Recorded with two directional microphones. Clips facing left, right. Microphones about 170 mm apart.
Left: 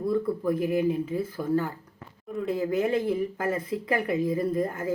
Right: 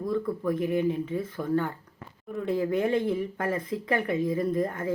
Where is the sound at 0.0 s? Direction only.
5° left (ahead or behind).